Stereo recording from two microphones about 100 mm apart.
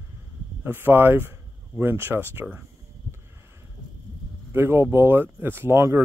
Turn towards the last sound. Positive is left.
turn(degrees=-25)  # may be behind; listen again after turning